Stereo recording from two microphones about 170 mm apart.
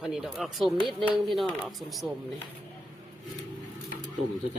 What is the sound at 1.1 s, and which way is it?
Speech, centre (ahead or behind).